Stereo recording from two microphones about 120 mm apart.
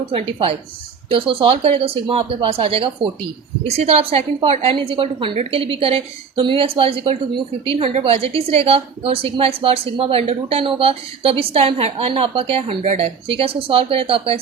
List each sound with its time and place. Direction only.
0.1 s a woman's voice: 50° right (ahead or behind)
3.7 s a woman's voice: 60° right (ahead or behind)